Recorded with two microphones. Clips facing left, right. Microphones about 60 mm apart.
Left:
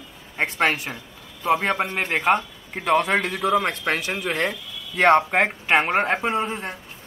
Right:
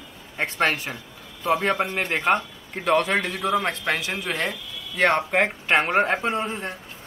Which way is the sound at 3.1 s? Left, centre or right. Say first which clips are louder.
Left 2 dB; left.